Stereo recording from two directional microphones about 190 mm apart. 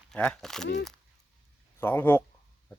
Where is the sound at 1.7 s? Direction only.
10° left (ahead or behind).